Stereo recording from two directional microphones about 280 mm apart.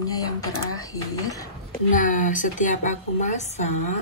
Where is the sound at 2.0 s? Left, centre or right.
Left.